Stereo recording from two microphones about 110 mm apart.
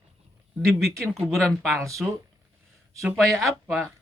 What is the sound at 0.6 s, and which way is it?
A man's voice, 5° left (ahead or behind).